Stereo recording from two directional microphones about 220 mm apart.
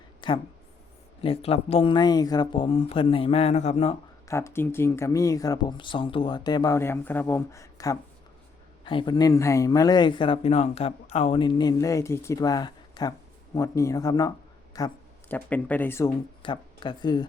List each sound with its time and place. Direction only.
0.2 s speech: 20° left (ahead or behind)
4.3 s speech: 10° left (ahead or behind)